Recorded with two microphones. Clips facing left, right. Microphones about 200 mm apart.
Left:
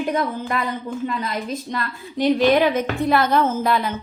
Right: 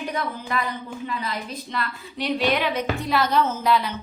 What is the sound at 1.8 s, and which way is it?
A woman's voice, 45° left (ahead or behind).